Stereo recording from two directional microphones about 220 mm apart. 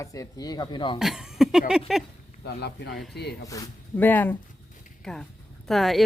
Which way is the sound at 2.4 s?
50° left (ahead or behind).